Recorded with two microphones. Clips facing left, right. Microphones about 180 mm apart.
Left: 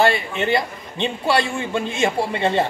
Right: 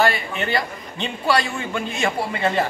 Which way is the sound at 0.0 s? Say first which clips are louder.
Left 2 dB; 25° left (ahead or behind).